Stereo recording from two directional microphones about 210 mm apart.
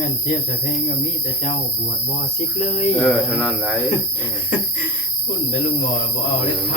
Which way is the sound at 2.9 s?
5° left (ahead or behind).